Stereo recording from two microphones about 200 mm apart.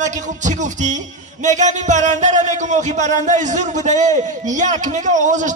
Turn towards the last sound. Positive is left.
turn(degrees=-40)  # may be behind; listen again after turning